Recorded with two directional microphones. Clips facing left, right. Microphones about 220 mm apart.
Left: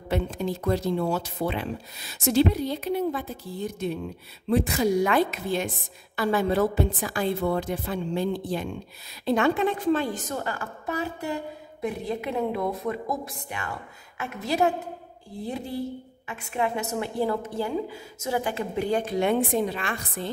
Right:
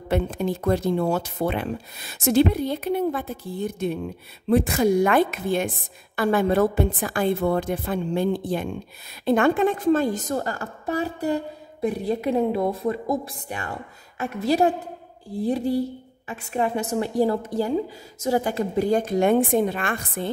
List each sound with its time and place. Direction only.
0.1 s a woman's voice: 55° right (ahead or behind)